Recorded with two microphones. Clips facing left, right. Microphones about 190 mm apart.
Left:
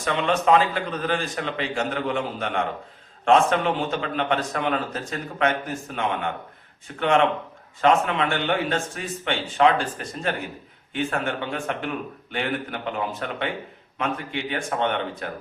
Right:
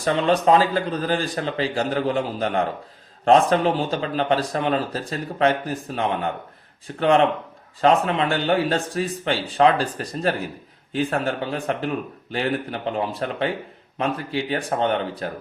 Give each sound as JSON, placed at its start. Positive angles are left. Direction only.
{"t": 0.0, "sound": "speech", "side_deg": -35}